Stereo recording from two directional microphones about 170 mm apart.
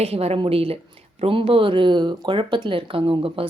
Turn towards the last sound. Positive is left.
turn(degrees=-35)  # may be behind; listen again after turning